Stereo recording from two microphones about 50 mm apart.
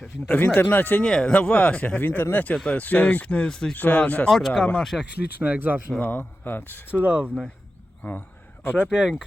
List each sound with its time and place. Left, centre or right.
0.3 s speech: left
1.0 s speech: left
3.5 s speech: centre
4.3 s speech: centre
5.4 s speech: right
6.0 s speech: left
7.0 s speech: right
8.0 s speech: left
8.9 s speech: centre